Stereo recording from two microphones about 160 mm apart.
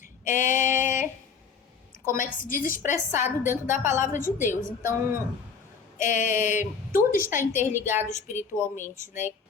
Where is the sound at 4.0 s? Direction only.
55° left (ahead or behind).